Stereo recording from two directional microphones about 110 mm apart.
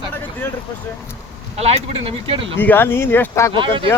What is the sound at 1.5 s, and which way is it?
Speech, 70° right (ahead or behind).